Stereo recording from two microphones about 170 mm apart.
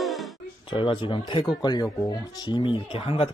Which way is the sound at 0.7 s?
30° left (ahead or behind).